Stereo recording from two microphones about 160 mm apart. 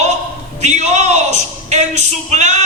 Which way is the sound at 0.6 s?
45° right (ahead or behind).